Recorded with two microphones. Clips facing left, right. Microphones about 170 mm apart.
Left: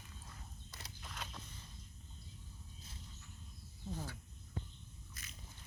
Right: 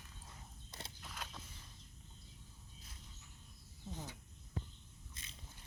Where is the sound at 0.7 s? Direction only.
25° right (ahead or behind).